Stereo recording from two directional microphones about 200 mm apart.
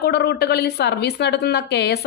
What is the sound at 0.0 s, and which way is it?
A woman's voice, 55° left (ahead or behind).